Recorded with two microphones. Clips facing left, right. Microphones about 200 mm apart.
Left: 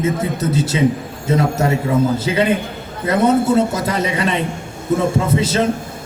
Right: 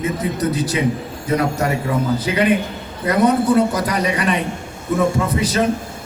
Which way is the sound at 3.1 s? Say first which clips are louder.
Left 1 dB; 25° left (ahead or behind).